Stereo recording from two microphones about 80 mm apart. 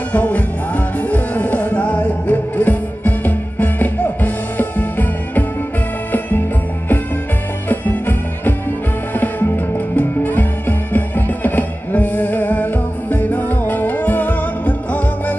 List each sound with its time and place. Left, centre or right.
0.1 s music: centre
7.6 s music: left